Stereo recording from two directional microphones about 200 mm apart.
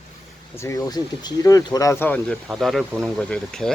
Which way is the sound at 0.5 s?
15° left (ahead or behind).